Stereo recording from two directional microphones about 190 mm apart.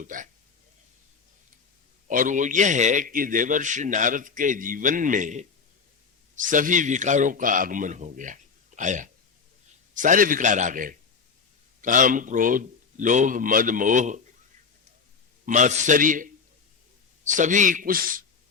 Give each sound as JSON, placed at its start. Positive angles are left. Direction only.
{"t": 0.0, "sound": "a man's voice", "side_deg": -45}
{"t": 2.0, "sound": "a man's voice", "side_deg": -45}
{"t": 15.4, "sound": "a man's voice", "side_deg": -40}